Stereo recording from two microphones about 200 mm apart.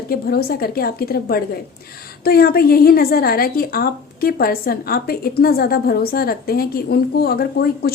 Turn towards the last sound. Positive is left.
turn(degrees=50)  # may be behind; listen again after turning